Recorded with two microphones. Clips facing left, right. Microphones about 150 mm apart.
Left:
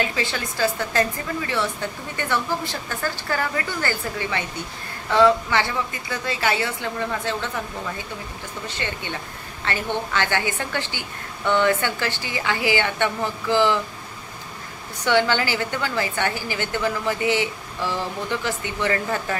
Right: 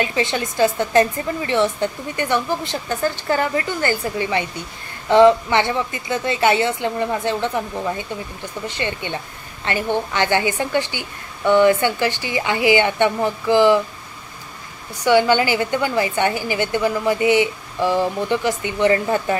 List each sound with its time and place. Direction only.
0.0 s a woman's voice: 20° right (ahead or behind)
8.6 s a woman's voice: 15° right (ahead or behind)
15.0 s a woman's voice: 15° right (ahead or behind)